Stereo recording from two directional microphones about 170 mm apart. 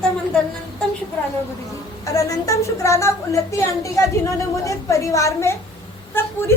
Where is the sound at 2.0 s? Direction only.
20° left (ahead or behind).